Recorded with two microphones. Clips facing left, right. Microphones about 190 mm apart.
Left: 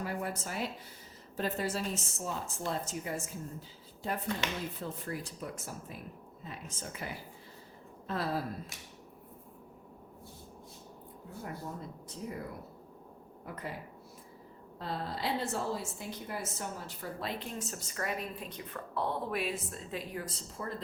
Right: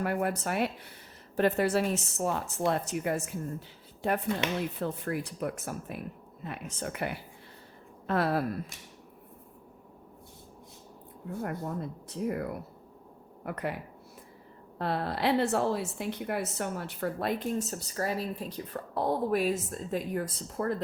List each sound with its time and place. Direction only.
0.0 s a woman's voice: 65° right (ahead or behind)
4.8 s a woman's voice: 65° right (ahead or behind)
11.4 s a woman's voice: 65° right (ahead or behind)
14.8 s a woman's voice: 65° right (ahead or behind)